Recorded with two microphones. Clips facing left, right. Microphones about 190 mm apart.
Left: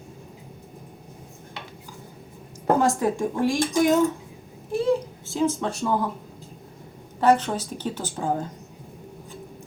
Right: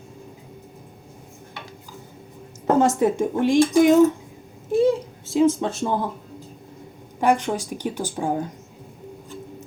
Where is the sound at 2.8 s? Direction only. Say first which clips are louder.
Right 7 dB; 20° right (ahead or behind).